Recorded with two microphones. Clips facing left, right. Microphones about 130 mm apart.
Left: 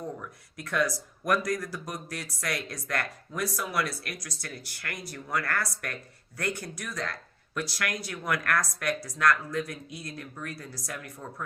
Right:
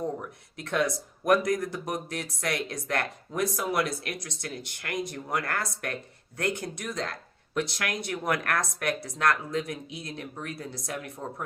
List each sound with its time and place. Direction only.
0.0 s speech: 25° right (ahead or behind)